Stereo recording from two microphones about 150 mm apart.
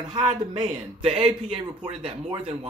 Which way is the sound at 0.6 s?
40° right (ahead or behind).